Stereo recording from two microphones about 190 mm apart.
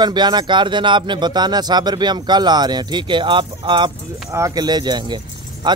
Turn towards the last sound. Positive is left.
turn(degrees=-25)  # may be behind; listen again after turning